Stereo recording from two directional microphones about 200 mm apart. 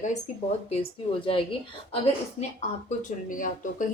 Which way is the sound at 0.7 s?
25° left (ahead or behind).